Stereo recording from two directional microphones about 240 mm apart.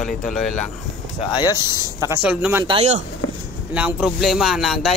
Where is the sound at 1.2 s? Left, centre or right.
Centre.